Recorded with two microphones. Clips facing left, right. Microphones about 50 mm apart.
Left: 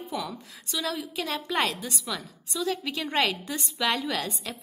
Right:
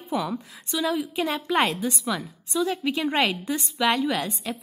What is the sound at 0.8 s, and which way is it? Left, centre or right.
A woman's voice, centre.